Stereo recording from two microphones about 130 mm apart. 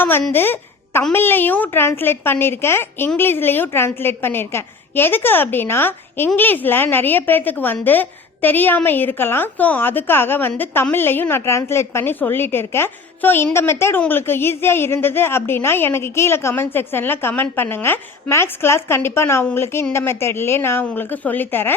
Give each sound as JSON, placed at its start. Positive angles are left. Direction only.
{"t": 0.0, "sound": "a woman's voice", "side_deg": 15}